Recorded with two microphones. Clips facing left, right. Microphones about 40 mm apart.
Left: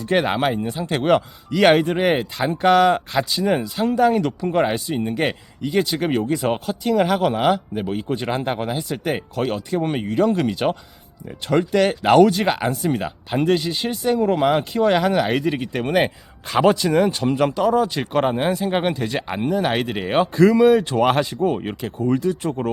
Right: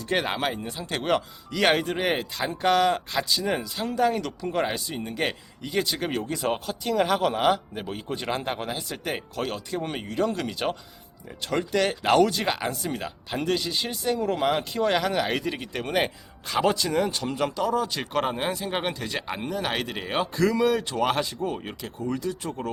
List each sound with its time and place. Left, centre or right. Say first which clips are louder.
0.1 s speech: left 7 dB; centre
5.1 s speech: left 6 dB; centre; by 22.7 s left